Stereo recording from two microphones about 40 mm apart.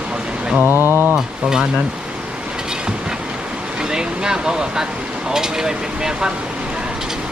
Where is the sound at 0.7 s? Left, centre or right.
Right.